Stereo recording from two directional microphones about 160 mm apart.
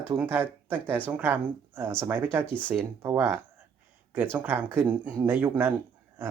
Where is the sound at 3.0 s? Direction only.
15° right (ahead or behind).